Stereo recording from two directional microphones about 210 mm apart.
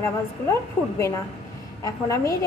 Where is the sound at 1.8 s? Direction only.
15° left (ahead or behind).